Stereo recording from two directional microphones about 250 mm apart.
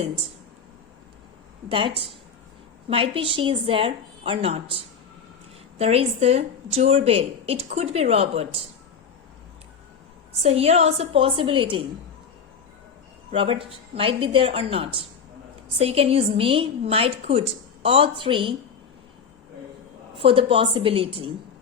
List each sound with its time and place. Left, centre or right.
1.7 s a woman's voice: right
5.8 s a woman's voice: right
10.4 s a woman's voice: right
13.3 s a woman's voice: right
20.1 s a woman's voice: right